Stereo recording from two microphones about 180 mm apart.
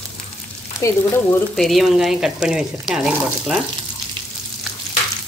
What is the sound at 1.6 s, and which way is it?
Speech, centre (ahead or behind).